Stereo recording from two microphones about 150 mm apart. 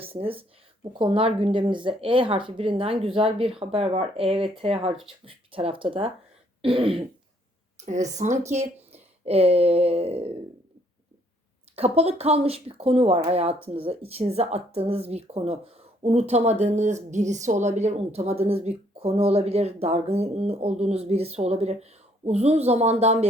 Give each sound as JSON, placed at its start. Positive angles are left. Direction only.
{"t": 0.0, "sound": "speech", "side_deg": -40}
{"t": 6.6, "sound": "throat clearing", "side_deg": -35}
{"t": 7.9, "sound": "speech", "side_deg": -55}
{"t": 11.8, "sound": "speech", "side_deg": -45}